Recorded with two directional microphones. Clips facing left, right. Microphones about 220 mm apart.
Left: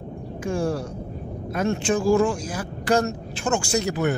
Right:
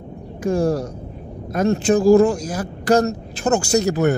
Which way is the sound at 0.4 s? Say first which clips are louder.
Right 6 dB; 40° right (ahead or behind).